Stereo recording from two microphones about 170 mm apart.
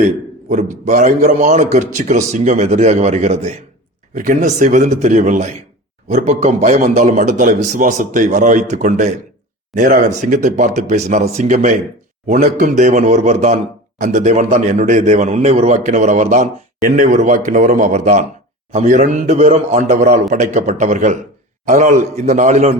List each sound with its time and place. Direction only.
0.9 s a man's voice: 50° right (ahead or behind)